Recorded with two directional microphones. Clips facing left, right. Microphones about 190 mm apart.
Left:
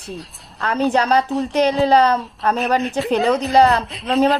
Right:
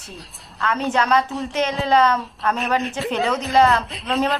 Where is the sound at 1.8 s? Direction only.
35° left (ahead or behind).